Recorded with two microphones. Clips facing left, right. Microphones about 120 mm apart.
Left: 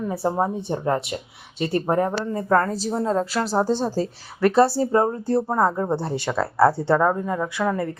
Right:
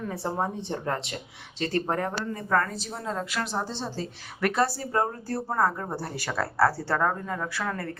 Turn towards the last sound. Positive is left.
turn(degrees=15)  # may be behind; listen again after turning